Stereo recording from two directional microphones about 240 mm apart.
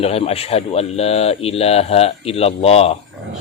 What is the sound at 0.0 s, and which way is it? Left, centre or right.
A man's voice, left.